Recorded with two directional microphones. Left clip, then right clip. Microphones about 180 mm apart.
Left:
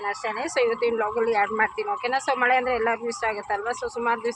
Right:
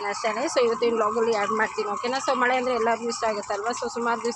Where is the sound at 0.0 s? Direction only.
5° right (ahead or behind).